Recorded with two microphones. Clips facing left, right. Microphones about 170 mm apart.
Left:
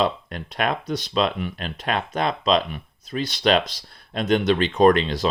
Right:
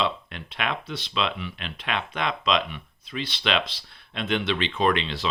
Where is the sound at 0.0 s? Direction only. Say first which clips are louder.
Left 5 dB; 40° left (ahead or behind).